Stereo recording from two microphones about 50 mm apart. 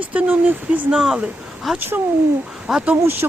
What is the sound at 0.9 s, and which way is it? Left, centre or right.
Speech, centre.